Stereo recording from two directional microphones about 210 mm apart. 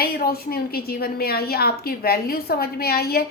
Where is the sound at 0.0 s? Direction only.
45° left (ahead or behind).